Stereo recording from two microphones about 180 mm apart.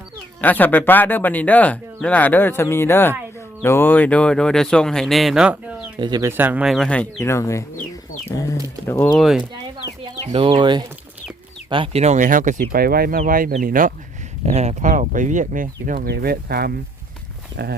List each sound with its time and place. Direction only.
0.4 s speech: 10° left (ahead or behind)
6.0 s speech: 25° right (ahead or behind)
6.3 s speech: 10° right (ahead or behind); by 7.9 s 15° left (ahead or behind)
8.9 s speech: 15° left (ahead or behind)
9.1 s speech: centre (ahead or behind)
10.3 s speech: 25° right (ahead or behind); by 12.5 s 45° right (ahead or behind)
12.7 s speech: 55° right (ahead or behind)